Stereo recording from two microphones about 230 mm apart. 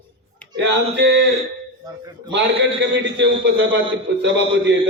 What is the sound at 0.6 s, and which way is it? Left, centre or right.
Speech, right.